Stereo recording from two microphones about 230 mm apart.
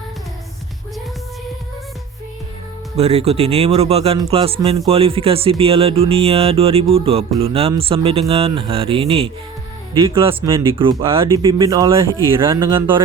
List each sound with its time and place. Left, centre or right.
2.9 s speech: right; by 13.0 s centre